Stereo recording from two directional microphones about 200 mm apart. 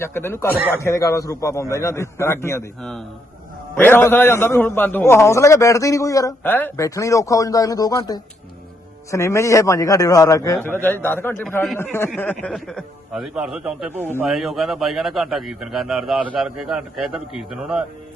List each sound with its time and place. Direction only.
0.0 s a man's voice: 10° left (ahead or behind)
0.6 s speech: 10° right (ahead or behind)
0.9 s a man's voice: 15° left (ahead or behind); by 17.8 s 5° right (ahead or behind)